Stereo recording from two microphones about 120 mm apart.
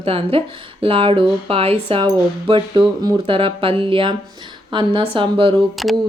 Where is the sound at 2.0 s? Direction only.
40° right (ahead or behind).